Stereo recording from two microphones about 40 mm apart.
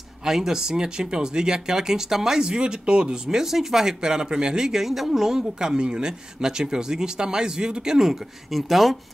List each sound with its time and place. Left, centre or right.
0.2 s speech: centre
4.8 s speech: centre